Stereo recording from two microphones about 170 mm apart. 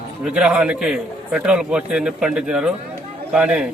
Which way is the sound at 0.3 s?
5° right (ahead or behind).